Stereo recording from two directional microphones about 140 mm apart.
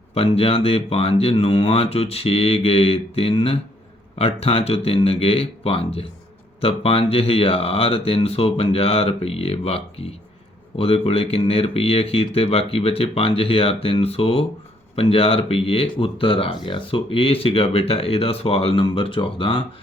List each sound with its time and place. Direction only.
0.1 s speech: 45° left (ahead or behind)